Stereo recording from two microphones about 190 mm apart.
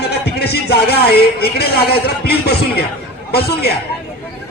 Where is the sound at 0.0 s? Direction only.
55° left (ahead or behind).